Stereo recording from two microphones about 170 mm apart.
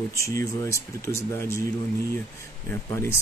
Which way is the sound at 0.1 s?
20° left (ahead or behind).